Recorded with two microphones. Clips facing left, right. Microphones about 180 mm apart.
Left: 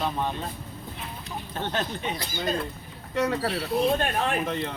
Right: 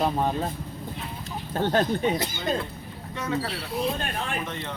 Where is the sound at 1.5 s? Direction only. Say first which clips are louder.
Right 7 dB; 45° right (ahead or behind).